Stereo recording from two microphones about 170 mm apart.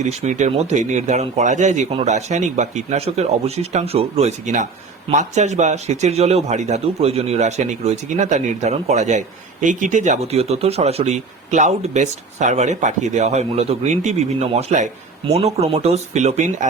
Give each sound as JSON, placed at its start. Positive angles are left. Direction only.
{"t": 0.0, "sound": "a man's voice", "side_deg": -45}